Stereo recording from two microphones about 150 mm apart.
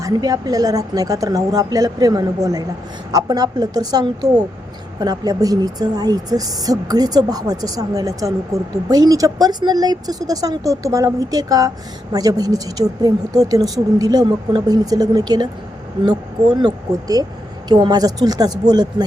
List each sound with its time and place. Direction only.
0.0 s speech: 25° right (ahead or behind)